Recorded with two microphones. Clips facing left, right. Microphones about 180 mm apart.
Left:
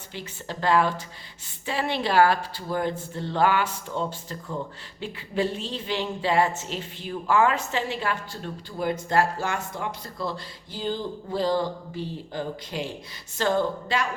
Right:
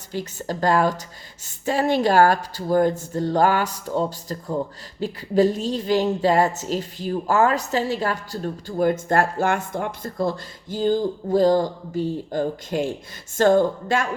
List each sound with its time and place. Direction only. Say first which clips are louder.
0.1 s speech: right 8 dB; 40° right (ahead or behind)